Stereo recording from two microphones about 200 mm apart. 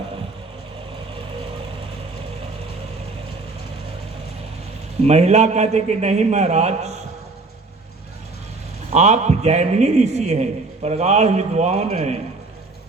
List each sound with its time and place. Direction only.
5.0 s a man's voice: 30° right (ahead or behind)
8.9 s a man's voice: 35° right (ahead or behind)